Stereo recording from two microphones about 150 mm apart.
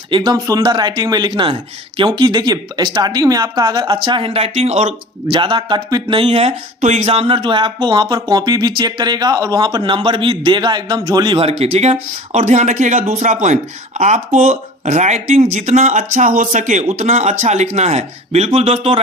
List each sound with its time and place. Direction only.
0.1 s speech: 30° right (ahead or behind)
11.6 s speech: 45° right (ahead or behind)